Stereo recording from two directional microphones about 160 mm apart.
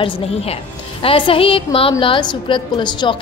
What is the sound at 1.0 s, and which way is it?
A woman's voice, 35° left (ahead or behind).